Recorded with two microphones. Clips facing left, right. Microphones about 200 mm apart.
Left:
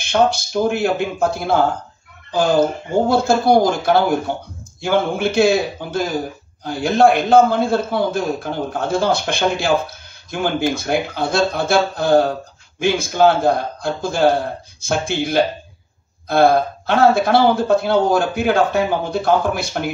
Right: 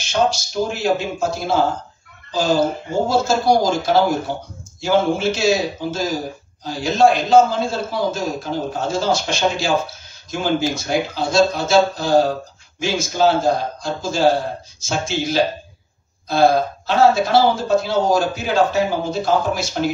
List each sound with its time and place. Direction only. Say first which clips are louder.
0.0 s speech: left 3 dB; 55° left (ahead or behind)